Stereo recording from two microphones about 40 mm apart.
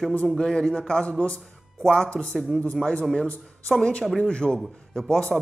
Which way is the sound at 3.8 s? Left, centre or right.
Left.